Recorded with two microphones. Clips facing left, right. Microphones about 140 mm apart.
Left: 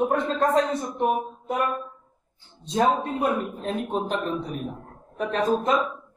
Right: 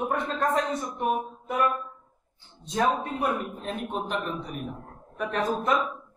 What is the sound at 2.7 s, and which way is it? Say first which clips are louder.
A man's voice: left 3 dB; 25° left (ahead or behind).